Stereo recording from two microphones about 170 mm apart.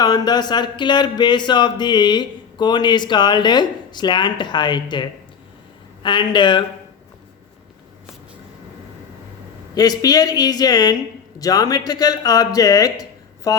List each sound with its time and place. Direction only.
0.0 s speech: 25° left (ahead or behind)
9.7 s speech: 20° left (ahead or behind)